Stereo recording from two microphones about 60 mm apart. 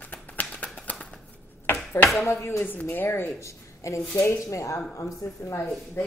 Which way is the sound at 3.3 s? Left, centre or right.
Left.